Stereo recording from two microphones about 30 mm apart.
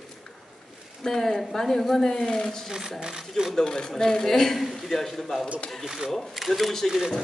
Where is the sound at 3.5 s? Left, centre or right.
Left.